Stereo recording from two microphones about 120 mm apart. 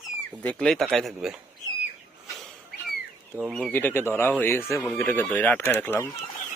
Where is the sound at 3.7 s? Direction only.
15° left (ahead or behind).